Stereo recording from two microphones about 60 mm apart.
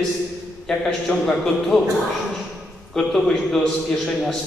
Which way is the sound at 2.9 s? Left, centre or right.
Centre.